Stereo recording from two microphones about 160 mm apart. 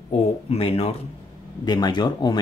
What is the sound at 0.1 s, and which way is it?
Speech, 40° left (ahead or behind).